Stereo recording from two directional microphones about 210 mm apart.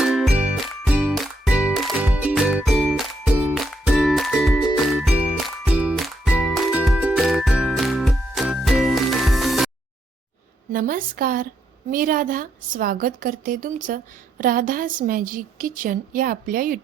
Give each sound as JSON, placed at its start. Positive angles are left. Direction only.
{"t": 0.0, "sound": "music", "side_deg": 0}
{"t": 10.7, "sound": "a woman's voice", "side_deg": -40}